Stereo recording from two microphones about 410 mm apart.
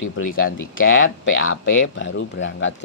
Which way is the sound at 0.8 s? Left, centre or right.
Left.